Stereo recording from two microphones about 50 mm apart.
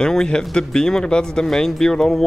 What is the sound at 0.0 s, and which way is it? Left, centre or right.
Speech, centre.